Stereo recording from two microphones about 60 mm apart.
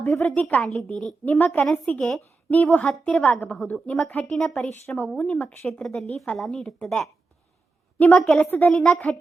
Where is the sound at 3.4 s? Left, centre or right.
Left.